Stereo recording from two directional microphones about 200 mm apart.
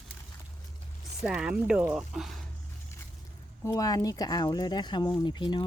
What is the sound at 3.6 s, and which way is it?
Speech, 15° left (ahead or behind).